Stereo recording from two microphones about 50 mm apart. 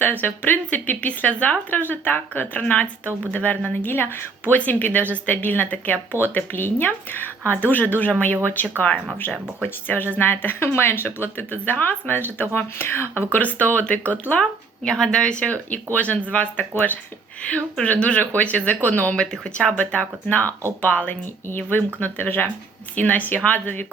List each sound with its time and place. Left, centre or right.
0.0 s speech: left
0.7 s speech: left
1.7 s speech: left
4.5 s speech: left
9.8 s speech: left
13.4 s speech: left
14.8 s speech: centre
15.7 s speech: left
19.1 s speech: centre
19.7 s speech: left
20.5 s speech: right
20.8 s speech: left
21.4 s speech: left